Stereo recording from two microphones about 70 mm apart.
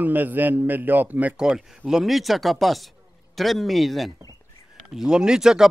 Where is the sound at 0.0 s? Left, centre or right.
Right.